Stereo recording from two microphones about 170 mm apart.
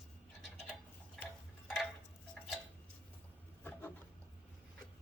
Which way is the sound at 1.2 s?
5° left (ahead or behind).